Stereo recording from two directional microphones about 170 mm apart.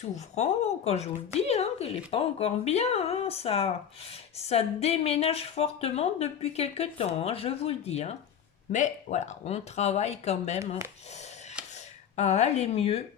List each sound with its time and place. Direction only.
0.3 s speech: 40° left (ahead or behind)
12.1 s speech: 40° left (ahead or behind)